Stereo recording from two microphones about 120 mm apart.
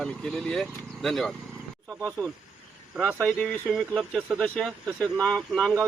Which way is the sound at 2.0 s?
20° right (ahead or behind).